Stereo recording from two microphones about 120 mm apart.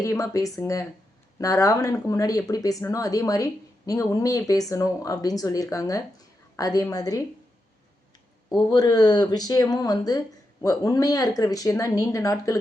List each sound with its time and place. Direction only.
0.0 s speech: 25° left (ahead or behind)
8.5 s speech: 35° left (ahead or behind)